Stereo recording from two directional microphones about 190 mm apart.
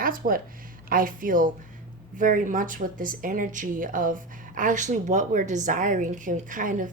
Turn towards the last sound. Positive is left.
turn(degrees=-45)  # may be behind; listen again after turning